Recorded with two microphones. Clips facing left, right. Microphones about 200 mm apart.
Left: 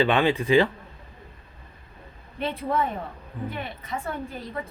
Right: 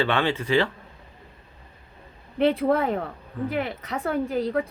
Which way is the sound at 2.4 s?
70° right (ahead or behind).